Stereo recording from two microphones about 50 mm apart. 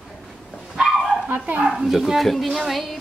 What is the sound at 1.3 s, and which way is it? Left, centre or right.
Speech, right.